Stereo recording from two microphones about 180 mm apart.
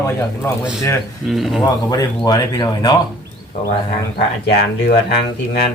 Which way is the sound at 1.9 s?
20° left (ahead or behind).